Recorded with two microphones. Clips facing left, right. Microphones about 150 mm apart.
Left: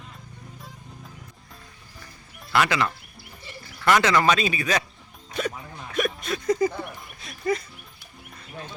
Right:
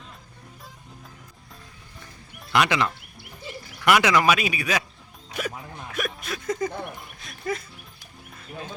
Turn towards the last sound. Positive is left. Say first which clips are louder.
# left 4 dB
turn(degrees=0)  # may be behind; listen again after turning